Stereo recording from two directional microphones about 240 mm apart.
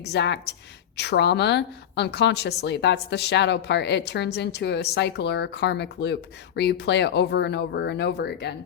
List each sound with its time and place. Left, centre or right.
0.0 s a woman's voice: left